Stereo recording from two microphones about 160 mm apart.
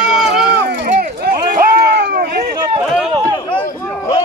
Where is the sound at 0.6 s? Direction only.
60° right (ahead or behind).